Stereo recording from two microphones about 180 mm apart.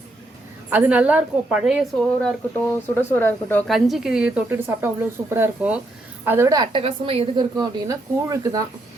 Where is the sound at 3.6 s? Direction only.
Centre (ahead or behind); by 8.6 s 20° right (ahead or behind).